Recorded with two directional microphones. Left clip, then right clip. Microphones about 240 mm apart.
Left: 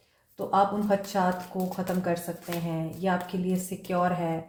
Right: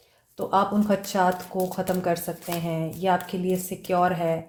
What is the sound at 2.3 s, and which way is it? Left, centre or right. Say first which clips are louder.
Speech: right 4 dB; right.